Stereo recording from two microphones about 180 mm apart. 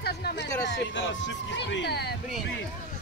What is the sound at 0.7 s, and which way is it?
Speech, 80° left.